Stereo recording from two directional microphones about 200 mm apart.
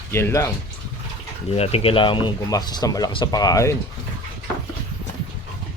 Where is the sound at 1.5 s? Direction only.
30° left (ahead or behind).